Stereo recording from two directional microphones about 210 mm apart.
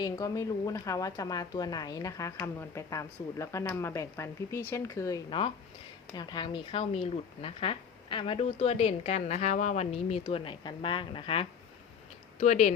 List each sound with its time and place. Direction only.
0.0 s a woman's voice: 15° left (ahead or behind); by 12.7 s 35° left (ahead or behind)